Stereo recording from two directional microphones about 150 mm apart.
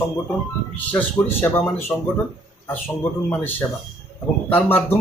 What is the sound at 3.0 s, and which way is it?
Speech, 10° left (ahead or behind).